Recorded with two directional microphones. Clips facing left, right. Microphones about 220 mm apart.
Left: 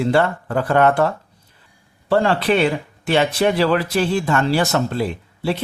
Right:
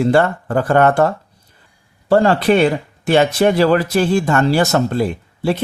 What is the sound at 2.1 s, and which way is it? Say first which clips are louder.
Speech: right 4 dB; 45° right (ahead or behind).